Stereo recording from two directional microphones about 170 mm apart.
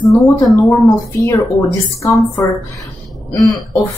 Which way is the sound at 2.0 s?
20° left (ahead or behind).